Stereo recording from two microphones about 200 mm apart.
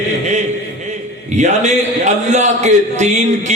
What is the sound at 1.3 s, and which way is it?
A man's voice, 35° right (ahead or behind).